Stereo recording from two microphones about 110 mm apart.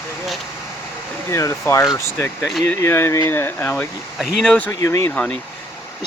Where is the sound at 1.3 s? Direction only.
25° left (ahead or behind).